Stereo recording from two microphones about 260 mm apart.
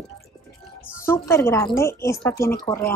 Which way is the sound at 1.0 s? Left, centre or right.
Centre.